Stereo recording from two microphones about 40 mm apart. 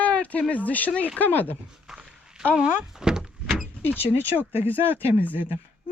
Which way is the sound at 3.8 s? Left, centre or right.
Left.